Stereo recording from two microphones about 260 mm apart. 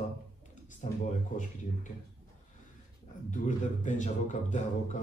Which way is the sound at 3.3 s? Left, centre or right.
Left.